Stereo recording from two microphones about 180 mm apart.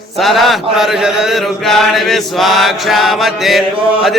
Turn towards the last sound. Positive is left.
turn(degrees=0)  # may be behind; listen again after turning